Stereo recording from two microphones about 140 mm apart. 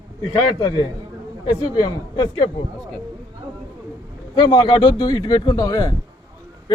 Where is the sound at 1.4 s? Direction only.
35° left (ahead or behind).